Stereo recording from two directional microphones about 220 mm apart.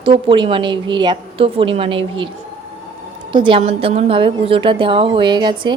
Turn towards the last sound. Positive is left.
turn(degrees=-20)  # may be behind; listen again after turning